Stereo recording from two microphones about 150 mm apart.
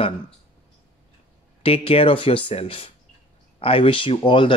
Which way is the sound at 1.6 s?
40° left (ahead or behind).